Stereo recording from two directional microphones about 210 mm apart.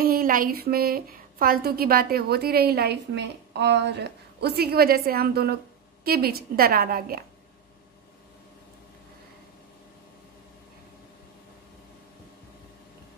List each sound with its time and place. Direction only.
0.0 s a woman's voice: 45° right (ahead or behind)